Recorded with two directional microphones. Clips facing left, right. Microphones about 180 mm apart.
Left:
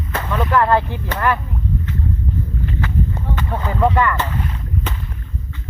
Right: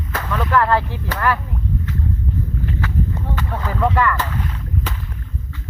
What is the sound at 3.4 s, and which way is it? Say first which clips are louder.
Speech: left 3 dB; 20° left (ahead or behind).